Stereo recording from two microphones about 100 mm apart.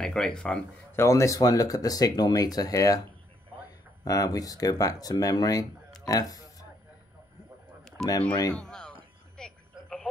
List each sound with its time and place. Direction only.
0.0 s speech: 5° left (ahead or behind)
0.9 s speech: 30° left (ahead or behind)
8.0 s speech: 5° left (ahead or behind)
8.5 s a sound: 5° left (ahead or behind)